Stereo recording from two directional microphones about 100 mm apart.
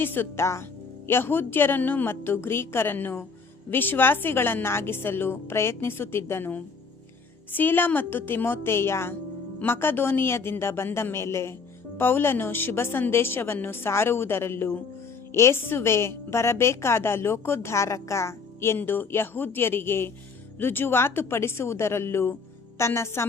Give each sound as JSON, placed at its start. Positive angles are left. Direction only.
{"t": 0.0, "sound": "a woman's voice", "side_deg": 20}